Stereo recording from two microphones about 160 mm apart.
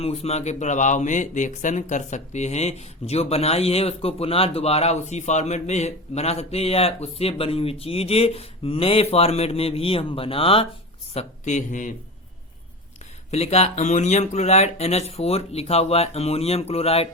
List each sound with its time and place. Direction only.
0.0 s speech: 40° left (ahead or behind)
13.3 s speech: 40° left (ahead or behind)